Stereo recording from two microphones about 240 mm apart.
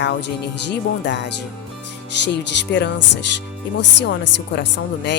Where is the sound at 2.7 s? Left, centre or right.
Left.